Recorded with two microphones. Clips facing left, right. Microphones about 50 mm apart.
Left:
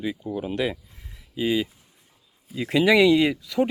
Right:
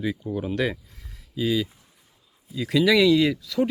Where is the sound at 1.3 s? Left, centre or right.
Left.